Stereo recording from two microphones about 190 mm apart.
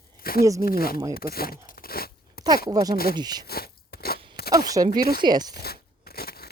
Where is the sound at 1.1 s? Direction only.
50° left (ahead or behind).